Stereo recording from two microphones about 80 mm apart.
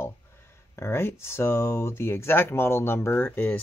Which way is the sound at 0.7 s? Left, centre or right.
Left.